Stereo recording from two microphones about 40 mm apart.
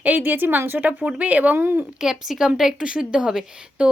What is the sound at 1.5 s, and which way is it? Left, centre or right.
Speech, right.